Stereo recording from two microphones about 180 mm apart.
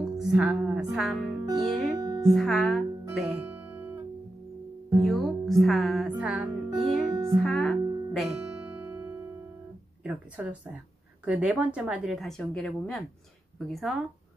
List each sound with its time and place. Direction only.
0.0 s music: centre (ahead or behind)
1.6 s a woman's voice: centre (ahead or behind)
2.0 s music: 20° right (ahead or behind)
2.2 s music: centre (ahead or behind)
5.0 s music: centre (ahead or behind)
10.0 s a woman's voice: 5° right (ahead or behind)